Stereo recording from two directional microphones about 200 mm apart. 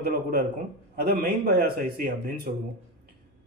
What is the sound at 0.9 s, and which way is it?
A man's voice, 50° right (ahead or behind).